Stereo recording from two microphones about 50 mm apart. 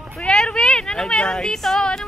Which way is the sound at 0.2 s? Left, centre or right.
Centre.